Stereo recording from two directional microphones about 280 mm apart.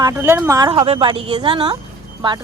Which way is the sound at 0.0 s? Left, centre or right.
Centre.